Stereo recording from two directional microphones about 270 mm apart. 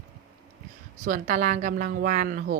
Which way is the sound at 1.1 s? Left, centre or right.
Right.